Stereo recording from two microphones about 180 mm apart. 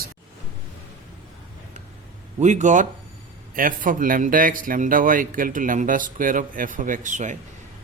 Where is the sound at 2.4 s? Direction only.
40° right (ahead or behind).